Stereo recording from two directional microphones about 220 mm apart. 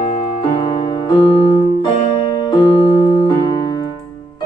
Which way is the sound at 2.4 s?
20° left (ahead or behind).